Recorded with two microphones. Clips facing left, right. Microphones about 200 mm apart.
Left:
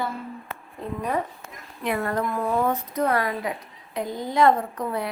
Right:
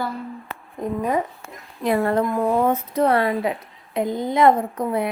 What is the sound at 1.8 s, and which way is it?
Speech, 30° right (ahead or behind).